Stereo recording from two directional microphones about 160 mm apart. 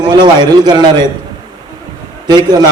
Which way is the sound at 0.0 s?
25° right (ahead or behind).